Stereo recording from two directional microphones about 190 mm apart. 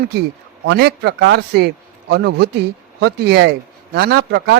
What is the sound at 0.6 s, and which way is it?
A man's voice, 65° right (ahead or behind).